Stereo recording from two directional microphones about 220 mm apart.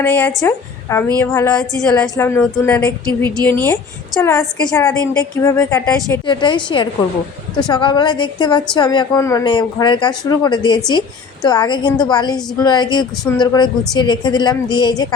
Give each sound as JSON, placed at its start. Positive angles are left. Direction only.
{"t": 0.0, "sound": "a woman's voice", "side_deg": 5}
{"t": 6.2, "sound": "speech", "side_deg": 20}